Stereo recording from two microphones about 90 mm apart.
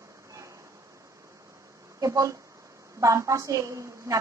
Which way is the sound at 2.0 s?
40° right (ahead or behind).